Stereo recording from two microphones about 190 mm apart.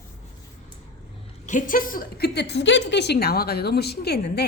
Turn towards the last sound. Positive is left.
turn(degrees=55)  # may be behind; listen again after turning